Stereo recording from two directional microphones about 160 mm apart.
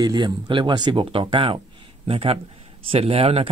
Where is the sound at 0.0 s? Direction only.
25° right (ahead or behind).